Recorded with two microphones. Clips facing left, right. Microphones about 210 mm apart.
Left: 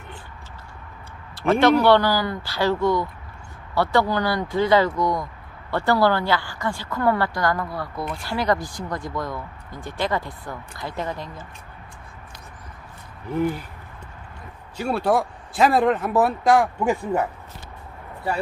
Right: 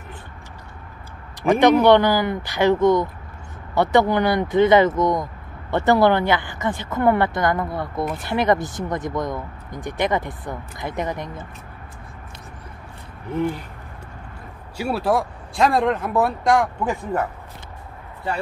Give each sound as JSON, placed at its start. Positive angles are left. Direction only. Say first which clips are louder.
{"t": 1.5, "sound": "speech", "louder": "right 2 dB", "side_deg": -20}
{"t": 14.8, "sound": "speech", "louder": "even", "side_deg": -5}